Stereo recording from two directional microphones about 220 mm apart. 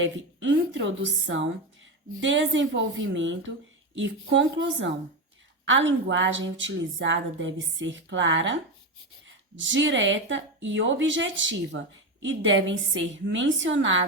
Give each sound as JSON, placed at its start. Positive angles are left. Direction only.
{"t": 0.0, "sound": "a woman's voice", "side_deg": -60}